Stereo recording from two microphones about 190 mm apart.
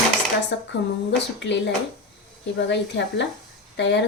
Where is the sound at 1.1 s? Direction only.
65° left (ahead or behind).